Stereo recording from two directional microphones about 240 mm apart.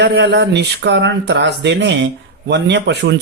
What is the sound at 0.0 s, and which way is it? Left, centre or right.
Speech, right.